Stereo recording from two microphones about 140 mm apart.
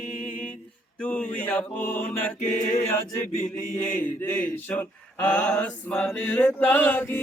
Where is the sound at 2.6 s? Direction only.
60° left (ahead or behind).